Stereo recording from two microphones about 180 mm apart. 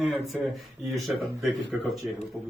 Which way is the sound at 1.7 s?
5° right (ahead or behind).